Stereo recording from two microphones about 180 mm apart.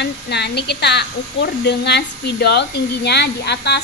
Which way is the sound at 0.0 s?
70° left (ahead or behind).